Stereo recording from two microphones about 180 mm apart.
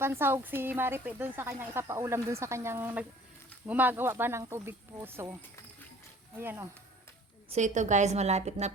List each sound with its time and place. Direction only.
0.0 s speech: 15° right (ahead or behind)
7.5 s a woman's voice: 40° right (ahead or behind)